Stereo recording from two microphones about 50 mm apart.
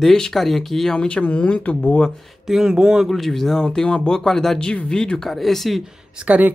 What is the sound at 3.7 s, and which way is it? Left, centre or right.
Speech, centre.